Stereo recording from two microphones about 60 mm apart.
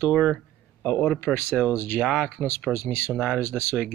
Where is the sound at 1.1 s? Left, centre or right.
Left.